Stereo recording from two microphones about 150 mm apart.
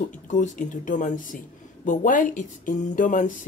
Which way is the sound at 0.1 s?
55° left (ahead or behind).